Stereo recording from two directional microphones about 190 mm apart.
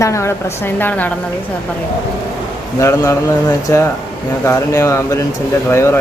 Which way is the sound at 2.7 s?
15° left (ahead or behind).